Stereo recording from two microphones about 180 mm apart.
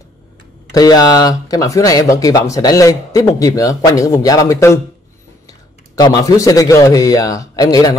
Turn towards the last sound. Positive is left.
turn(degrees=20)  # may be behind; listen again after turning